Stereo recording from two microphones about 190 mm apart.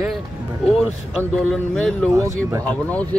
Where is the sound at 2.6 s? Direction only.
5° left (ahead or behind).